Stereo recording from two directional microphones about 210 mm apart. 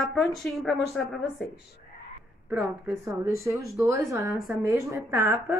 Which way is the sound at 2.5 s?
5° right (ahead or behind).